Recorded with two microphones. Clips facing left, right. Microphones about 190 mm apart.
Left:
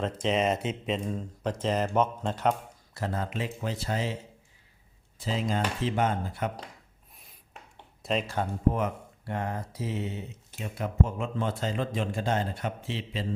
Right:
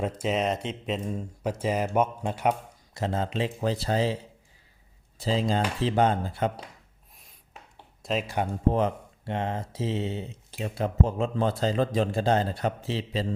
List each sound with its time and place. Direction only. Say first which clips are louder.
0.0 s speech: even; 10° right (ahead or behind); by 6.5 s 30° right (ahead or behind)
8.0 s speech: even; 5° right (ahead or behind)
8.3 s speech: right 2 dB; 15° right (ahead or behind)
8.7 s speech: right 5 dB; 25° right (ahead or behind)